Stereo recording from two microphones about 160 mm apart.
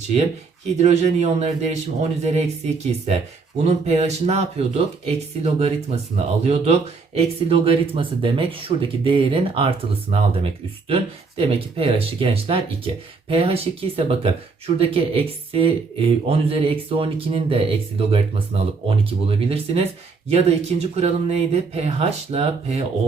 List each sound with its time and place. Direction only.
0.8 s a man's voice: 40° right (ahead or behind)